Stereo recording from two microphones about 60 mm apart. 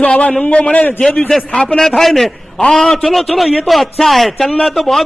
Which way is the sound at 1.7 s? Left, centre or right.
Centre.